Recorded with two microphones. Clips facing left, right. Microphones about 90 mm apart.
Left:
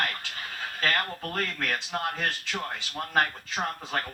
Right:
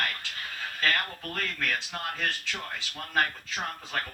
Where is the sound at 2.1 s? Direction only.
20° left (ahead or behind).